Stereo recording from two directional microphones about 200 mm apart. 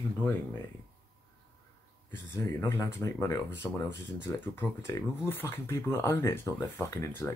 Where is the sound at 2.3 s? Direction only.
15° left (ahead or behind).